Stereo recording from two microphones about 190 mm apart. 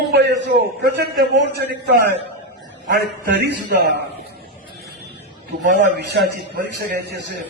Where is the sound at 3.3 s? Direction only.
65° right (ahead or behind).